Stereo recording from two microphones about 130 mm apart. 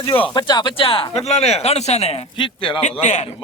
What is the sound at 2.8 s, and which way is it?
Speech, 65° left (ahead or behind).